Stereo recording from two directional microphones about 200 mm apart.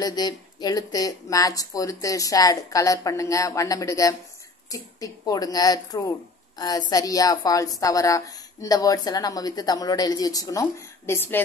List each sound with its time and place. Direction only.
0.0 s speech: 20° left (ahead or behind)